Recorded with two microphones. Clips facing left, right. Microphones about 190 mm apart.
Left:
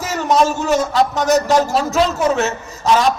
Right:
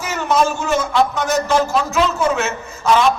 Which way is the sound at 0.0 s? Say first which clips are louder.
Left 2 dB; 35° left (ahead or behind).